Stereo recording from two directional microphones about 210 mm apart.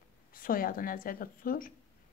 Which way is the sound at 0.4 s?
40° left (ahead or behind).